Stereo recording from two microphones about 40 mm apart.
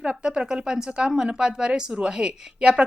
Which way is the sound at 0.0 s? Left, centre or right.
Centre.